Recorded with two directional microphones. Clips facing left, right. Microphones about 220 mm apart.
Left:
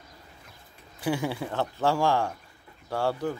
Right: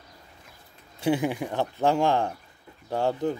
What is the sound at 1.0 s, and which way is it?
Speech, 20° right (ahead or behind).